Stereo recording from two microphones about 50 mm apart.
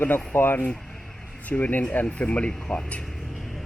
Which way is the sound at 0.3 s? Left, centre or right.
Left.